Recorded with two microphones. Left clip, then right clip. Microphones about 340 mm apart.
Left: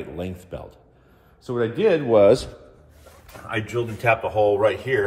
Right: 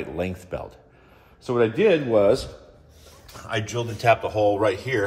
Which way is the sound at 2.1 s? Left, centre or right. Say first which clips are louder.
Left 4 dB; left.